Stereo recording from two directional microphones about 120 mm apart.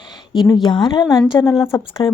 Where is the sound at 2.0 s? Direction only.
40° left (ahead or behind).